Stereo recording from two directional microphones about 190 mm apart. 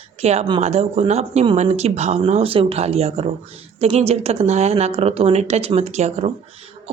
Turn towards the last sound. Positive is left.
turn(degrees=-35)  # may be behind; listen again after turning